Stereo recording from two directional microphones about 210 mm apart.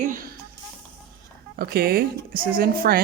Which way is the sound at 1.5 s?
45° right (ahead or behind).